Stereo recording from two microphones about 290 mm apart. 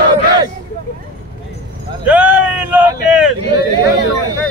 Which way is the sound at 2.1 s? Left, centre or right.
Centre.